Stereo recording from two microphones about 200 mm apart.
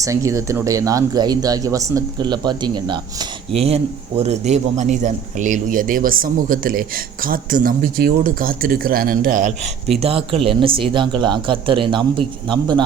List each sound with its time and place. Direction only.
0.0 s speech: 15° right (ahead or behind); by 9.5 s 45° right (ahead or behind)
10.0 s speech: 30° right (ahead or behind)